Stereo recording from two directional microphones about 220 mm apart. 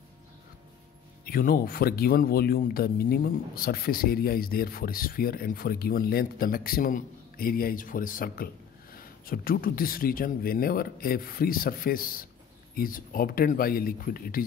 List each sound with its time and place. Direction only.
1.2 s speech: 40° left (ahead or behind)